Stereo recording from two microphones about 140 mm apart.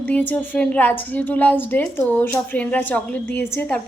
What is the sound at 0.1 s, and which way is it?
A woman's voice, 10° left (ahead or behind).